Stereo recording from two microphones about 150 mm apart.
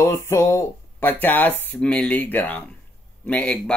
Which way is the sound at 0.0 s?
15° left (ahead or behind).